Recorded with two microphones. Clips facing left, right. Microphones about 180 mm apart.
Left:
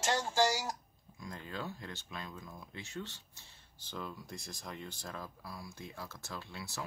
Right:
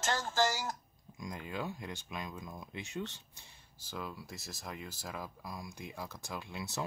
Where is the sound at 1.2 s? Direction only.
15° right (ahead or behind).